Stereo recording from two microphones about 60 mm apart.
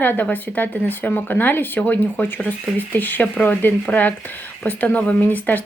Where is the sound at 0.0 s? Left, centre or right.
Left.